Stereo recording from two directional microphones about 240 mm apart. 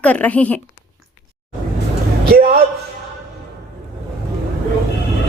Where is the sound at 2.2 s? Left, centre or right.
Right.